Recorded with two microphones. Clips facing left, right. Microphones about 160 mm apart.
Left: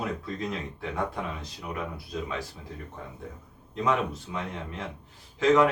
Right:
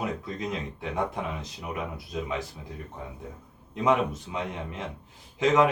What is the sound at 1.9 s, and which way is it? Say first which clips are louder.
Speech: right 2 dB; 20° right (ahead or behind).